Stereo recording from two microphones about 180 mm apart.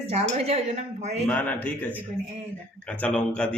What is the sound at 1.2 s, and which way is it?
A man's voice, 10° left (ahead or behind).